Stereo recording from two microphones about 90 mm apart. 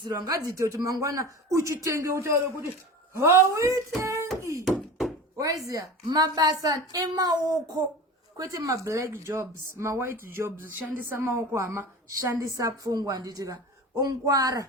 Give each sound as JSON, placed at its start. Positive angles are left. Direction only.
{"t": 0.0, "sound": "speech", "side_deg": -45}
{"t": 5.4, "sound": "a woman's voice", "side_deg": -40}